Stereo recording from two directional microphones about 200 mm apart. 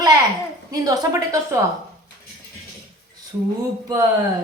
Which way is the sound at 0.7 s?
20° right (ahead or behind).